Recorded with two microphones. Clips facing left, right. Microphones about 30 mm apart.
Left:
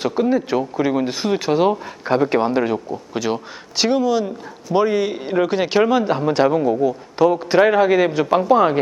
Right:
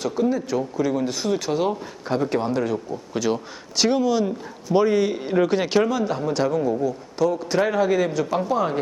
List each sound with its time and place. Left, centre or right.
0.0 s speech: left
3.1 s speech: centre
5.8 s a man's voice: left